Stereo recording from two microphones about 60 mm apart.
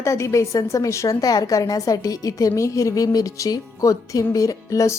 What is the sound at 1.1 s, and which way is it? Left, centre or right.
A woman's voice, left.